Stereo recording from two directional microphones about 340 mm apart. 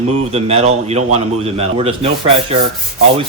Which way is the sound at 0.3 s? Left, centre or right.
Centre.